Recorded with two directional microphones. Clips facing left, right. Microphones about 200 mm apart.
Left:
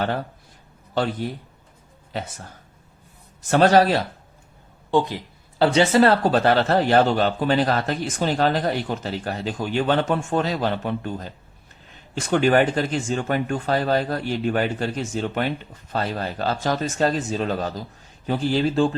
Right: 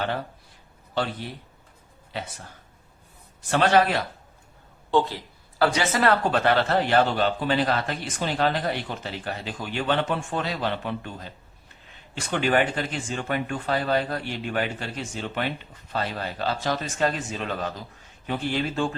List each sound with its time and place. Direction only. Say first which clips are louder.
3.5 s speech: left 4 dB; 40° left (ahead or behind)
4.9 s speech: left 2 dB; 15° left (ahead or behind); by 11.3 s 45° left (ahead or behind)
12.3 s speech: left 5 dB; 45° left (ahead or behind)